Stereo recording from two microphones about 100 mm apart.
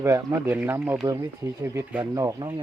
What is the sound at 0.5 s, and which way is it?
Speech, 20° right (ahead or behind).